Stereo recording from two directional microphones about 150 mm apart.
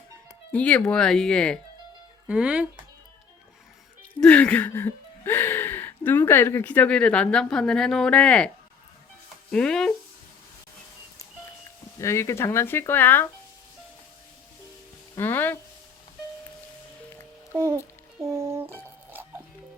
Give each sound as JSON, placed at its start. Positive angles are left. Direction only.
{"t": 0.5, "sound": "speech", "side_deg": 10}
{"t": 2.2, "sound": "speech", "side_deg": -10}
{"t": 4.1, "sound": "gasp", "side_deg": 10}
{"t": 9.5, "sound": "speech", "side_deg": 5}
{"t": 11.9, "sound": "gasp", "side_deg": 20}
{"t": 15.1, "sound": "speech", "side_deg": 15}
{"t": 17.5, "sound": "a child's voice", "side_deg": -15}